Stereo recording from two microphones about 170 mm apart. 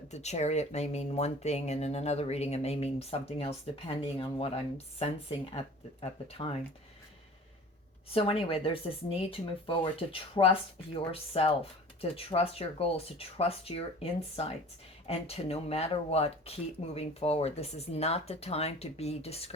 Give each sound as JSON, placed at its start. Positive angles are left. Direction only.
{"t": 0.1, "sound": "speech", "side_deg": 40}
{"t": 8.1, "sound": "speech", "side_deg": 35}